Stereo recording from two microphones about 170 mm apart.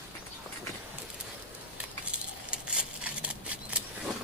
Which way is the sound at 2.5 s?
5° right (ahead or behind).